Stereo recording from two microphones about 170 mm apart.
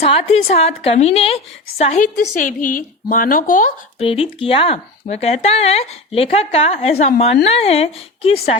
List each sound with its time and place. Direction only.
0.0 s speech: 35° left (ahead or behind)
2.3 s speech: 50° left (ahead or behind)
4.0 s speech: 35° left (ahead or behind)